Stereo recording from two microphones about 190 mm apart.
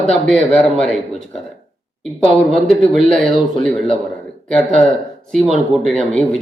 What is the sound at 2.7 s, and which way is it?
Speech, centre (ahead or behind).